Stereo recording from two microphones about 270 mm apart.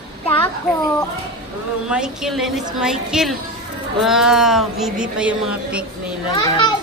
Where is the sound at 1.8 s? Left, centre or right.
Centre.